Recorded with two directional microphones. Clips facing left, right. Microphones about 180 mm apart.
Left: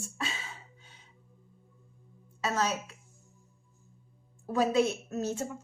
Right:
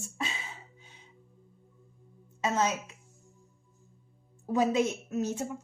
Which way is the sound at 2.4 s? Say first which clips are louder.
Right 2 dB; 20° right (ahead or behind).